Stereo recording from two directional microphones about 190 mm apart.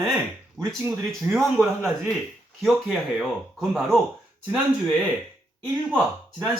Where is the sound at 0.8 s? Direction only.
5° right (ahead or behind).